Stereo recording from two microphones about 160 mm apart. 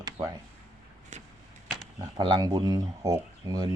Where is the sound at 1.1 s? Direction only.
50° right (ahead or behind).